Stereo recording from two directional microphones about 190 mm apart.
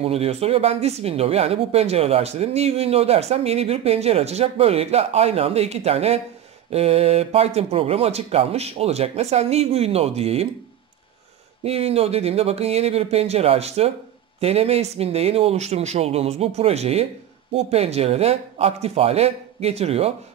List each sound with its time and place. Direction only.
0.0 s speech: 30° right (ahead or behind)
11.6 s speech: 30° right (ahead or behind)